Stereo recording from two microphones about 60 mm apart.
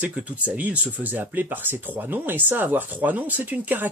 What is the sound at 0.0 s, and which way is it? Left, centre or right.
Speech, right.